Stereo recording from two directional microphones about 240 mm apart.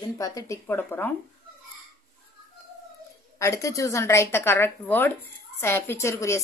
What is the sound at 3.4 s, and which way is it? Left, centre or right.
A woman's voice, centre.